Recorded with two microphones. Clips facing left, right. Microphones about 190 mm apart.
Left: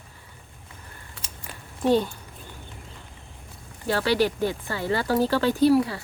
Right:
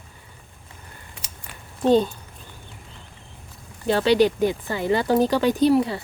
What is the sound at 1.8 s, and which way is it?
Speech, 20° right (ahead or behind).